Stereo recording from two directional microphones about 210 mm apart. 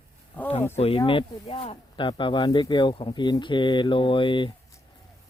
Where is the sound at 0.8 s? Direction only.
25° left (ahead or behind).